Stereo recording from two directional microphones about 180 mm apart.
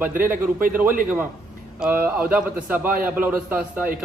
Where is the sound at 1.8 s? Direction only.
10° right (ahead or behind).